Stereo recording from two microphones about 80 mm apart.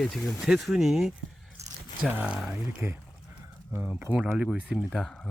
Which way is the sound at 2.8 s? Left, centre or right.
Right.